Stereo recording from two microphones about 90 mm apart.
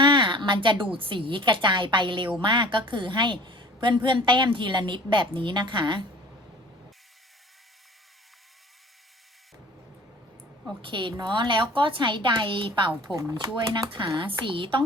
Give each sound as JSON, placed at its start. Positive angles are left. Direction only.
{"t": 0.0, "sound": "a woman's voice", "side_deg": -60}
{"t": 10.8, "sound": "a woman's voice", "side_deg": -65}
{"t": 13.1, "sound": "speech", "side_deg": 0}
{"t": 14.2, "sound": "a woman's voice", "side_deg": -70}